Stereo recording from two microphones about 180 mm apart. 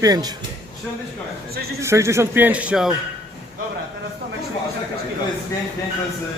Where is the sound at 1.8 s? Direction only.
15° right (ahead or behind).